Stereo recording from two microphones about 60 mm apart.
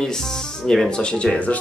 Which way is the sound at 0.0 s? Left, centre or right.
Centre.